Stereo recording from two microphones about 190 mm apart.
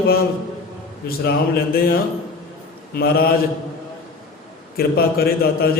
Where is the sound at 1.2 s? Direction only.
55° left (ahead or behind).